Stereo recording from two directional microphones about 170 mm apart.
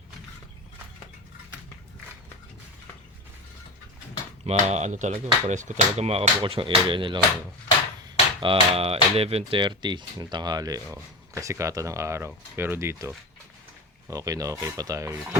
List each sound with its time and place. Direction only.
4.4 s speech: 40° right (ahead or behind)
8.4 s speech: 35° right (ahead or behind)